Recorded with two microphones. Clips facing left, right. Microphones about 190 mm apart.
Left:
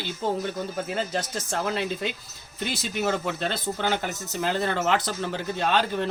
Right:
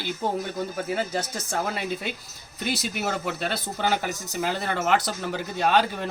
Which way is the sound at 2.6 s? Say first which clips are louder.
Left 1 dB; 10° right (ahead or behind).